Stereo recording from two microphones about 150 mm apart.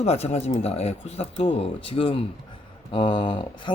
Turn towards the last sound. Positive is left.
turn(degrees=35)  # may be behind; listen again after turning